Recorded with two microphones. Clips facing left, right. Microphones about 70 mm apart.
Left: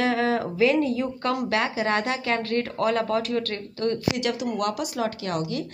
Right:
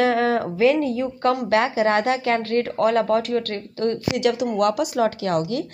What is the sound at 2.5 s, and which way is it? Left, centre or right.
Speech, right.